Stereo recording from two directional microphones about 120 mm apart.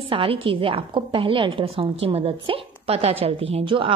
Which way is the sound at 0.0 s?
50° right (ahead or behind).